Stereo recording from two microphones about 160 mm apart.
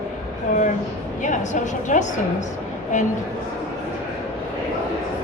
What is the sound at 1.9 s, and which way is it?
Speech, 50° left (ahead or behind).